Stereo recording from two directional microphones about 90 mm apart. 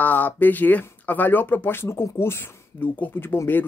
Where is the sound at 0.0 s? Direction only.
20° left (ahead or behind).